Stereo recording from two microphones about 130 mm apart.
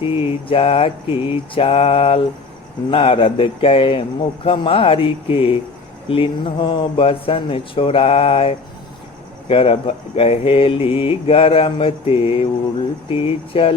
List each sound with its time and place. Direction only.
0.0 s speech: 45° left (ahead or behind)